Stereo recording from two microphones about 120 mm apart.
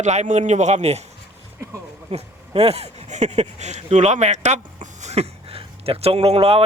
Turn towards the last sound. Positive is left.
turn(degrees=-55)  # may be behind; listen again after turning